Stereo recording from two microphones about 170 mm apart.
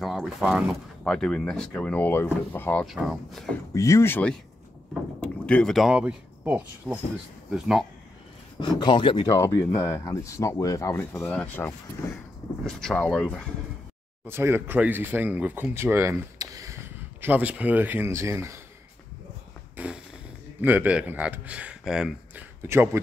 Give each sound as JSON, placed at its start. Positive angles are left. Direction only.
{"t": 0.0, "sound": "speech", "side_deg": 0}
{"t": 2.9, "sound": "speech", "side_deg": 0}
{"t": 3.7, "sound": "speech", "side_deg": 20}
{"t": 8.5, "sound": "speech", "side_deg": 25}
{"t": 9.3, "sound": "speech", "side_deg": 15}
{"t": 14.2, "sound": "speech", "side_deg": -15}
{"t": 17.2, "sound": "speech", "side_deg": -10}
{"t": 19.8, "sound": "speech", "side_deg": -10}